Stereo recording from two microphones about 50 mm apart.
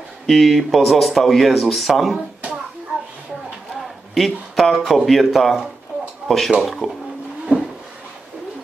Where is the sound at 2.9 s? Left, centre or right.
Right.